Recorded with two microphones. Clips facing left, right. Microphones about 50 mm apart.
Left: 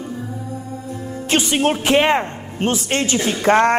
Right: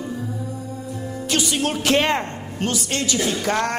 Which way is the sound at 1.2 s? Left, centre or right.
Left.